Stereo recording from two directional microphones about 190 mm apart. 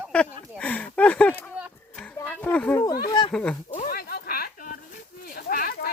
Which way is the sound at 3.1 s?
25° left (ahead or behind).